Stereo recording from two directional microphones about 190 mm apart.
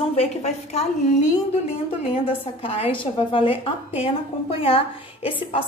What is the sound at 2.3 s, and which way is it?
A woman's voice, 30° left (ahead or behind).